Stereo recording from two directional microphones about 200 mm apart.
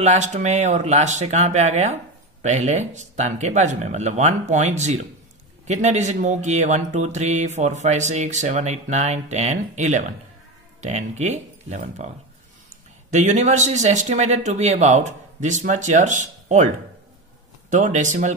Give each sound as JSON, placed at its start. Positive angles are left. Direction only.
{"t": 0.0, "sound": "speech", "side_deg": -35}
{"t": 13.1, "sound": "speech", "side_deg": -35}
{"t": 17.6, "sound": "speech", "side_deg": -40}